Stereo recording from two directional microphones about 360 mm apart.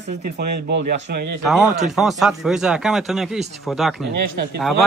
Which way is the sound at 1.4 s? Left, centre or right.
Centre.